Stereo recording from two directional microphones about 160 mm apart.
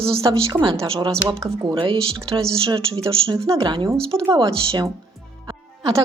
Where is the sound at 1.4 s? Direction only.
25° right (ahead or behind).